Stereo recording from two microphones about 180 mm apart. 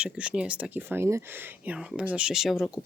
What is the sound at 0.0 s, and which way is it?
Speech, 5° right (ahead or behind).